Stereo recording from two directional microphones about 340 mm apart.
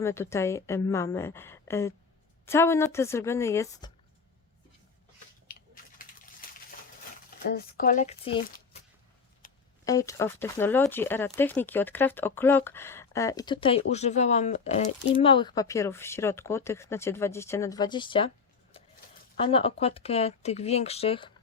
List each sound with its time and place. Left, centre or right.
0.0 s speech: centre
5.5 s typing: left
7.4 s speech: left
9.8 s speech: centre
19.4 s speech: centre